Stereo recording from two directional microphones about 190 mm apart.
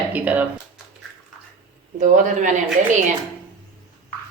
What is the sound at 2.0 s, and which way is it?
Speech, 40° right (ahead or behind).